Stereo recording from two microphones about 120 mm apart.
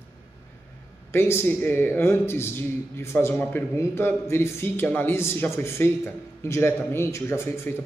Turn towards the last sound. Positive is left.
turn(degrees=20)  # may be behind; listen again after turning